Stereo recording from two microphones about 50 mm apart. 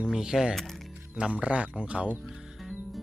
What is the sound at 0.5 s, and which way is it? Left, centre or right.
Speech, centre.